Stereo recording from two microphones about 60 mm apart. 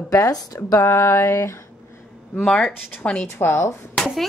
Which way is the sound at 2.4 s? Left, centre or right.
Centre.